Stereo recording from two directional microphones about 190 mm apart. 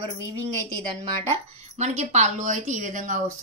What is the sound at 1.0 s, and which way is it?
A woman's voice, 35° right (ahead or behind).